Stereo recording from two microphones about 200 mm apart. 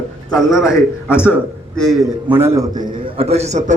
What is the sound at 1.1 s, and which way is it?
A man's voice, 10° left (ahead or behind).